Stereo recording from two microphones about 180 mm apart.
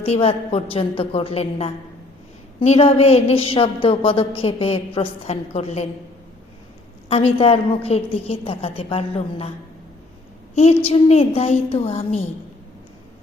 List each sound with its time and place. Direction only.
0.0 s a woman's voice: 35° left (ahead or behind)
7.1 s a woman's voice: 35° left (ahead or behind)
10.5 s a woman's voice: 35° left (ahead or behind)